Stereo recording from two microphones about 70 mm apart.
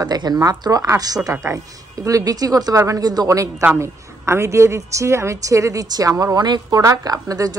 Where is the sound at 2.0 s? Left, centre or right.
Right.